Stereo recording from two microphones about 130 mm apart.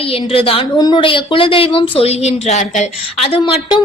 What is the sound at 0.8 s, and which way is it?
Speech, 35° left (ahead or behind).